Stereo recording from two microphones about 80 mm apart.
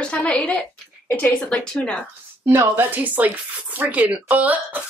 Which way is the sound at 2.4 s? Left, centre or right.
Right.